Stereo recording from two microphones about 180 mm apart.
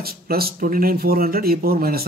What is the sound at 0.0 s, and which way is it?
Speech, 55° right (ahead or behind).